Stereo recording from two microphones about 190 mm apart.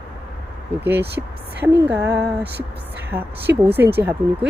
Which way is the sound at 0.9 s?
10° right (ahead or behind).